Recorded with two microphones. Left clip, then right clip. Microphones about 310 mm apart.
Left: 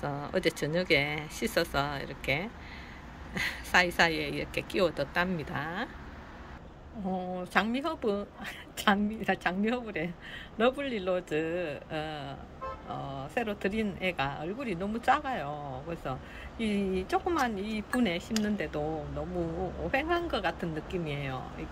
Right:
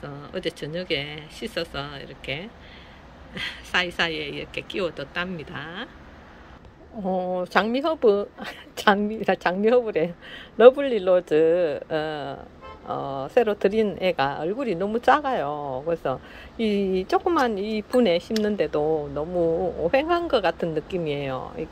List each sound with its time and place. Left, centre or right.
0.0 s speech: centre
7.2 s speech: centre
19.9 s speech: centre